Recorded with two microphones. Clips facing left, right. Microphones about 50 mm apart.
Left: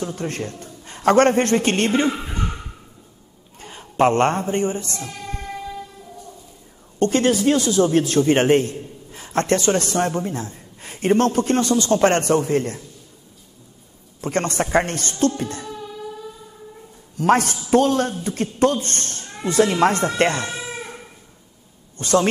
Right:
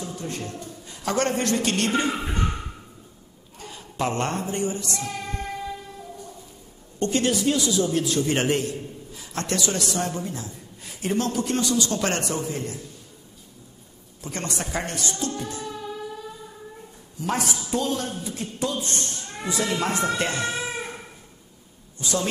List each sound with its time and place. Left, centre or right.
0.0 s a man's voice: left
3.5 s a man's voice: left
7.0 s a man's voice: left
14.2 s speech: left
17.2 s speech: left
20.4 s a sound: centre
21.9 s speech: left